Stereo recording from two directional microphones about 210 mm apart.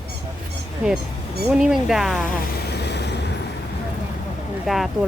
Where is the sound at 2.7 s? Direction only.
55° left (ahead or behind).